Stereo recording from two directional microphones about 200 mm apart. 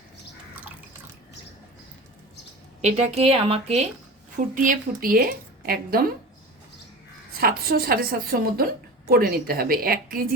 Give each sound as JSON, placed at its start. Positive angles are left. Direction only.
{"t": 2.8, "sound": "speech", "side_deg": -30}
{"t": 4.5, "sound": "a woman's voice", "side_deg": -40}
{"t": 7.3, "sound": "a woman's voice", "side_deg": -50}